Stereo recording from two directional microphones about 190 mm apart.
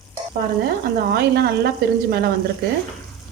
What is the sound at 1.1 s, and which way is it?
Speech, 55° right (ahead or behind).